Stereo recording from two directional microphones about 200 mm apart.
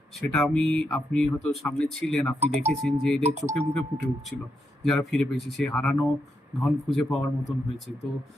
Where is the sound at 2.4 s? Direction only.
35° right (ahead or behind).